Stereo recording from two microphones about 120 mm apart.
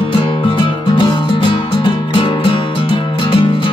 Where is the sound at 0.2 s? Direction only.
45° left (ahead or behind).